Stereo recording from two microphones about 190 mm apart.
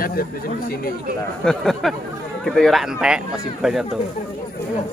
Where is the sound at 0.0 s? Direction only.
50° left (ahead or behind).